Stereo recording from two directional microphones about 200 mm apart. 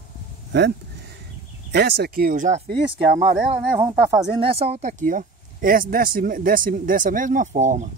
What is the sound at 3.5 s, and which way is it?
Speech, 10° right (ahead or behind).